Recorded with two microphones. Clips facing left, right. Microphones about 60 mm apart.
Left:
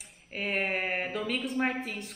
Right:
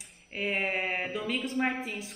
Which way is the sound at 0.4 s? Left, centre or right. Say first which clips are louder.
Even; centre.